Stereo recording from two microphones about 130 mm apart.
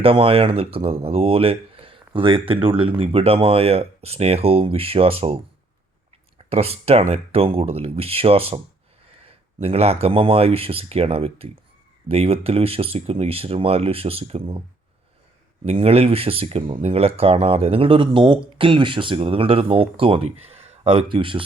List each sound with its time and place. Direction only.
0.0 s speech: 45° right (ahead or behind)
6.5 s speech: 50° right (ahead or behind)
15.6 s speech: 50° right (ahead or behind)